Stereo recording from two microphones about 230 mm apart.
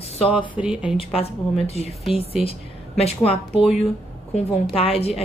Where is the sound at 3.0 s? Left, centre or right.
Left.